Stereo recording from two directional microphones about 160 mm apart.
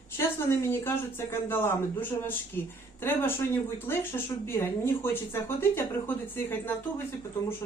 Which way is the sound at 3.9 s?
15° left (ahead or behind).